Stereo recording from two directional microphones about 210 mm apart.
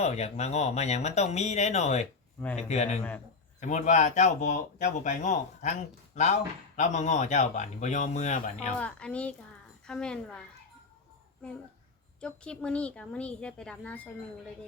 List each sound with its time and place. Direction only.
0.0 s speech: 30° left (ahead or behind)
8.8 s speech: 5° left (ahead or behind)
12.2 s speech: 5° left (ahead or behind)